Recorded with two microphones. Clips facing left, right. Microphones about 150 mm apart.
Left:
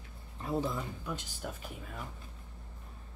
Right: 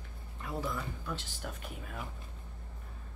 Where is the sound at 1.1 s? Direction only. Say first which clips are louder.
Left 1 dB; 10° left (ahead or behind).